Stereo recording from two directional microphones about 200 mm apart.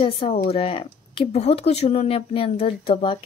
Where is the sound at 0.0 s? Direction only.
30° left (ahead or behind).